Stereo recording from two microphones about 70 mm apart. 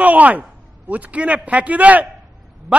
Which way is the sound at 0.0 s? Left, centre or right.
Right.